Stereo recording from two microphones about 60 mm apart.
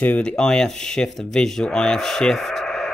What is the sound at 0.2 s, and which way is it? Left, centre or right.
Speech, centre.